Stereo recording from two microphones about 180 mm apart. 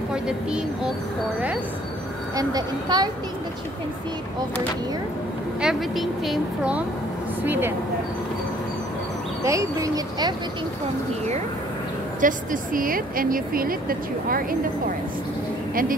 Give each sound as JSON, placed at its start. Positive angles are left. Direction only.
{"t": 0.1, "sound": "speech", "side_deg": -5}
{"t": 2.3, "sound": "speech", "side_deg": -20}
{"t": 5.6, "sound": "a woman's voice", "side_deg": 0}
{"t": 9.4, "sound": "speech", "side_deg": -15}
{"t": 12.2, "sound": "speech", "side_deg": -50}